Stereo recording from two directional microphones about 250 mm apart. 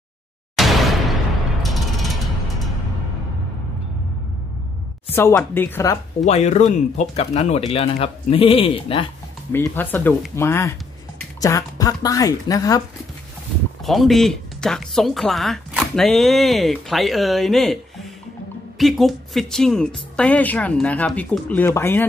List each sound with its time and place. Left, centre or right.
0.6 s a sound: centre
1.6 s mechanisms: centre
5.1 s speech: centre
6.2 s speech: left
9.5 s speech: centre
13.8 s speech: centre